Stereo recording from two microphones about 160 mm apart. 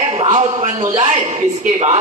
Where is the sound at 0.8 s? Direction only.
25° right (ahead or behind).